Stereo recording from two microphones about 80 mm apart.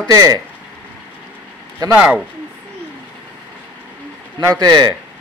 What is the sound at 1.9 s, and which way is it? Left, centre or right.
Speech, centre.